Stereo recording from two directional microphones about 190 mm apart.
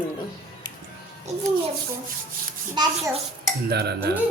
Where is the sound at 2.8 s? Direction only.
25° right (ahead or behind).